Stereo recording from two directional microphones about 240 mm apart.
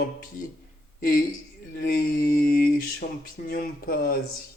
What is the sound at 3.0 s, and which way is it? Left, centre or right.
Speech, left.